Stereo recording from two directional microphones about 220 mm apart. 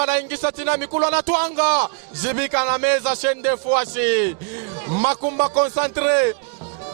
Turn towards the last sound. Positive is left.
turn(degrees=-15)  # may be behind; listen again after turning